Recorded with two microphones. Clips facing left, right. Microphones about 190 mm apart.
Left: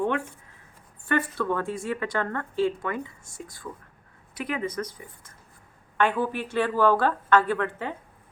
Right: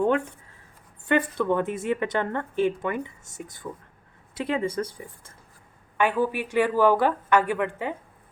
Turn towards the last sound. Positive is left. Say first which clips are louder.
# right 1 dB
turn(degrees=-15)  # may be behind; listen again after turning